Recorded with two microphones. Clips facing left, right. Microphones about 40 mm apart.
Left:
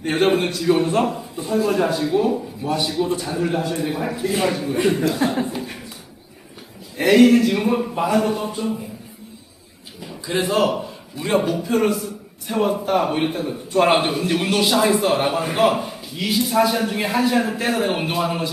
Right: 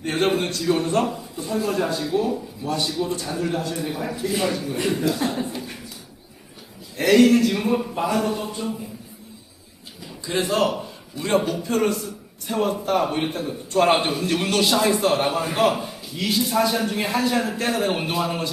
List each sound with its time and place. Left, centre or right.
0.0 s a man's voice: centre
1.1 s a man's voice: left
6.9 s a man's voice: centre
10.2 s a man's voice: centre